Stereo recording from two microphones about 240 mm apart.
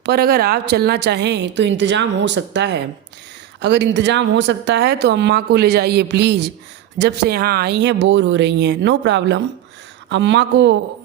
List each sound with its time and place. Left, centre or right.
0.0 s speech: right